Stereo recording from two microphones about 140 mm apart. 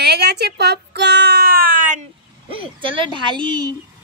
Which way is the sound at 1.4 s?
90° right.